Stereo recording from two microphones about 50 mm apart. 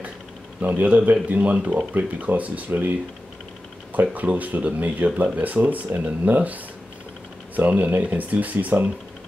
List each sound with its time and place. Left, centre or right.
0.6 s speech: right
2.0 s speech: right
3.9 s speech: right